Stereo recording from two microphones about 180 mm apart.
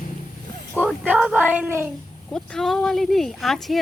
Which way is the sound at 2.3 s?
5° left (ahead or behind).